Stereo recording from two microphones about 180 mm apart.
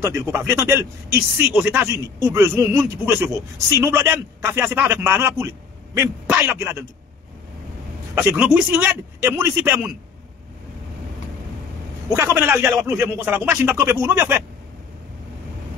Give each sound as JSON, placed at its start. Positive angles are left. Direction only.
{"t": 0.0, "sound": "speech", "side_deg": -15}
{"t": 8.1, "sound": "speech", "side_deg": -10}
{"t": 12.2, "sound": "speech", "side_deg": -15}